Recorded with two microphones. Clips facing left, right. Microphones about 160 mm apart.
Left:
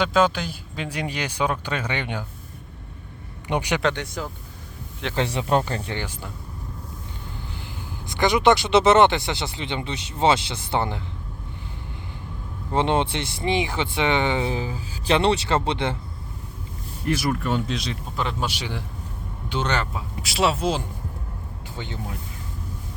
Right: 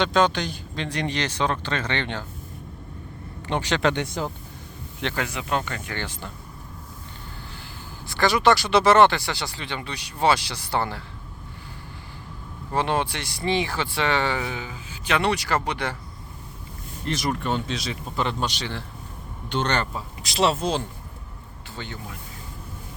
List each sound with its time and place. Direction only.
0.0 s speech: 5° left (ahead or behind)
3.4 s a man's voice: 15° left (ahead or behind)
3.9 s speech: 25° right (ahead or behind)
5.1 s speech: 30° left (ahead or behind)
5.9 s speech: 10° left (ahead or behind)
8.0 s speech: 20° left (ahead or behind)
12.7 s speech: 25° left (ahead or behind)
17.1 s speech: 5° left (ahead or behind)